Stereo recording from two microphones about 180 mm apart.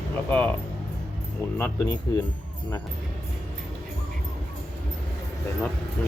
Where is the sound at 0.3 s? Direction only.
10° left (ahead or behind).